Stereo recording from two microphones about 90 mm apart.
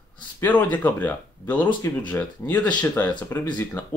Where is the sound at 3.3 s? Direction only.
30° left (ahead or behind).